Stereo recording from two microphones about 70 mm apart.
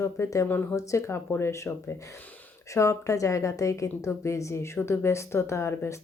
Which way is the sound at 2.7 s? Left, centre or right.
Left.